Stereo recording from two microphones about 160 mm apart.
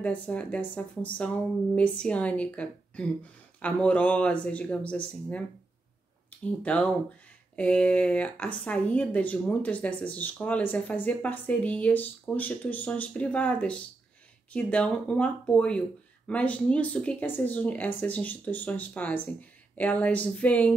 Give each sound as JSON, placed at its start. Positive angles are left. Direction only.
{"t": 0.0, "sound": "speech", "side_deg": 10}
{"t": 6.6, "sound": "speech", "side_deg": 10}